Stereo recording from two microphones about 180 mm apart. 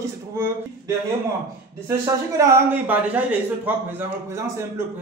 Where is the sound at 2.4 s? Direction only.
15° right (ahead or behind).